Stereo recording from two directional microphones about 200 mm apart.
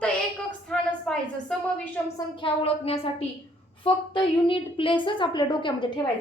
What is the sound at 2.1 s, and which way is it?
A woman's voice, 25° left (ahead or behind).